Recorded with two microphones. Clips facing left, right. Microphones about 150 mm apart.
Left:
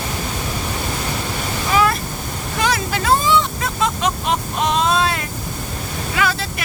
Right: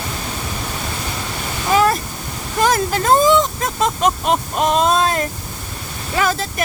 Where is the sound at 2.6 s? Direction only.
45° right (ahead or behind).